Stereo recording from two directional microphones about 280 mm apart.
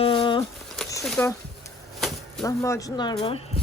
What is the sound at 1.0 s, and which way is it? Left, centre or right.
Speech, centre.